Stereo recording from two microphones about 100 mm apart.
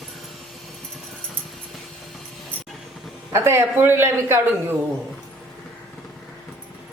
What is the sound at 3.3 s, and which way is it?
Speech, 25° right (ahead or behind).